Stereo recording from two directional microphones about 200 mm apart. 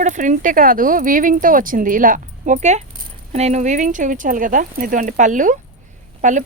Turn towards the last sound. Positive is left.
turn(degrees=-40)  # may be behind; listen again after turning